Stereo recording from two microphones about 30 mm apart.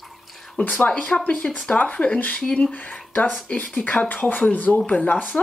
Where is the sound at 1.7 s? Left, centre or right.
Left.